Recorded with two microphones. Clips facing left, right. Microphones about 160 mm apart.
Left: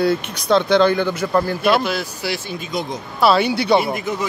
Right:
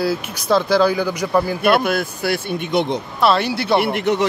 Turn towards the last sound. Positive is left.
turn(degrees=-70)  # may be behind; listen again after turning